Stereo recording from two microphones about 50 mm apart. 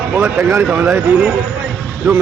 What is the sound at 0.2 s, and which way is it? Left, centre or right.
Speech, right.